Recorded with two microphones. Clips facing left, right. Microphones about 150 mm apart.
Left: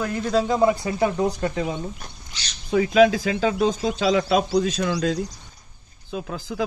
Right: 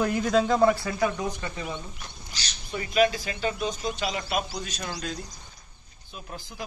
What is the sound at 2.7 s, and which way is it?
Speech, 90° left.